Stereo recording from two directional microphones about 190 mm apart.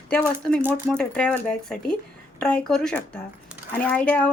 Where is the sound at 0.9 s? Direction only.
5° left (ahead or behind).